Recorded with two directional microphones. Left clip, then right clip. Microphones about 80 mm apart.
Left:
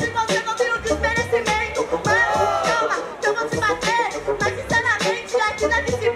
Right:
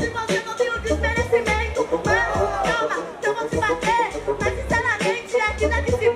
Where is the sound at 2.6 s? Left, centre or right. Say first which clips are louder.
Left 2 dB; left.